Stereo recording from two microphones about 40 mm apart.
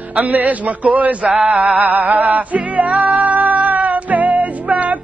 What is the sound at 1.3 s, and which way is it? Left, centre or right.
Music, right.